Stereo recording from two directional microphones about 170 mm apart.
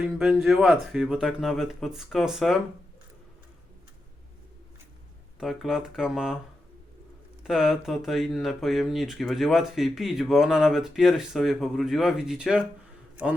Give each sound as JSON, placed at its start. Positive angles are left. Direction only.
{"t": 0.0, "sound": "speech", "side_deg": -5}
{"t": 5.4, "sound": "speech", "side_deg": 0}
{"t": 7.4, "sound": "speech", "side_deg": 0}